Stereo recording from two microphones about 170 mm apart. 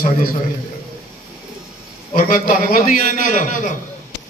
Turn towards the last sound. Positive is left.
turn(degrees=45)  # may be behind; listen again after turning